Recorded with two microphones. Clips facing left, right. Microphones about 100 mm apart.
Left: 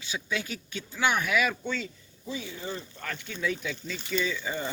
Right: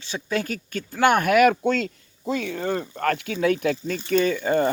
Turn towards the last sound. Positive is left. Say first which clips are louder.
# right 11 dB
turn(degrees=-55)  # may be behind; listen again after turning